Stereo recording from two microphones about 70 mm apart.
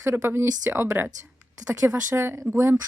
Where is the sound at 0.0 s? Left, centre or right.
Right.